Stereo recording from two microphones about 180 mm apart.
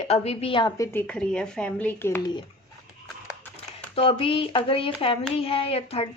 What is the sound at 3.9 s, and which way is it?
A woman's voice, 30° left (ahead or behind).